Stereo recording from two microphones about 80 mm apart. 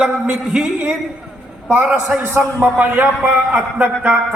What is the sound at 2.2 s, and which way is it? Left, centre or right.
A man's voice, right.